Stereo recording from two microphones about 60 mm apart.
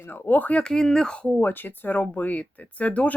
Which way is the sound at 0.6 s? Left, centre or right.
Centre.